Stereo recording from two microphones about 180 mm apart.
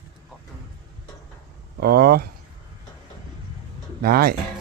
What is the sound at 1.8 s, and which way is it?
Speech, 60° right (ahead or behind).